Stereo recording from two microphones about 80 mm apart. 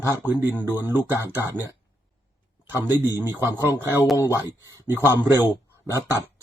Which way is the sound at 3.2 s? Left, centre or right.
Right.